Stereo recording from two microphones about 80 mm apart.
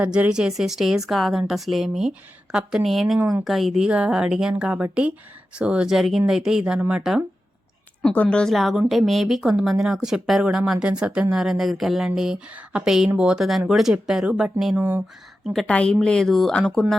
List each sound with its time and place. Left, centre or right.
0.0 s a woman's voice: centre
8.1 s a woman's voice: centre
15.6 s a woman's voice: centre